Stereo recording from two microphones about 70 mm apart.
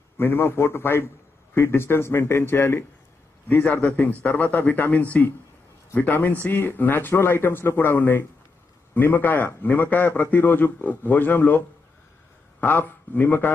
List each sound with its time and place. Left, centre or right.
0.2 s a man's voice: left